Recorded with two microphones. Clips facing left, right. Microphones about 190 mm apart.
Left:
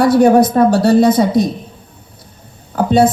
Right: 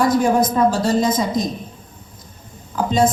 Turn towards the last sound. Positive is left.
turn(degrees=60)  # may be behind; listen again after turning